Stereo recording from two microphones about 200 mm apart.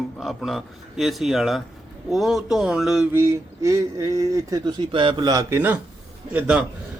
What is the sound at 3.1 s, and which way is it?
Speech, 15° right (ahead or behind).